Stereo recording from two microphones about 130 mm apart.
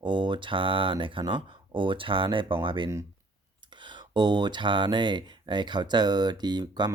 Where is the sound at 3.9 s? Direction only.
35° right (ahead or behind).